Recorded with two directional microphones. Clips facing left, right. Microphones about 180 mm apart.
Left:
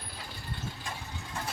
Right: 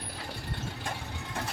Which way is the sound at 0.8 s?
60° right (ahead or behind).